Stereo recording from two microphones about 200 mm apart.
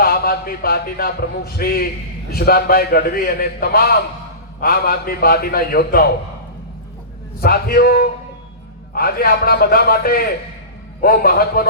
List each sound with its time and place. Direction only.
0.0 s a man's voice: 50° left (ahead or behind)
7.4 s a man's voice: 50° left (ahead or behind)